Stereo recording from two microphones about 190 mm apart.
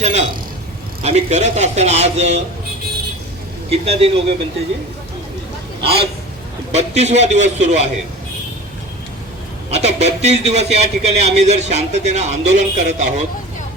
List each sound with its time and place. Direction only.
0.0 s a sound: 35° right (ahead or behind)
1.0 s a man's voice: 35° right (ahead or behind)
3.7 s a man's voice: 30° right (ahead or behind)
5.8 s a man's voice: 30° right (ahead or behind)
9.6 s a man's voice: 35° right (ahead or behind)